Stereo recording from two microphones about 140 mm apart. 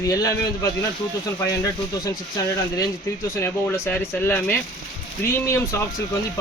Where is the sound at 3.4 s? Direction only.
15° left (ahead or behind).